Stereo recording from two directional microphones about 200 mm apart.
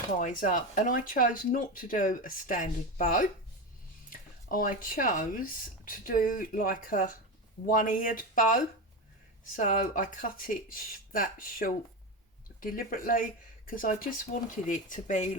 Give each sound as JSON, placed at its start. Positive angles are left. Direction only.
{"t": 0.2, "sound": "speech", "side_deg": 40}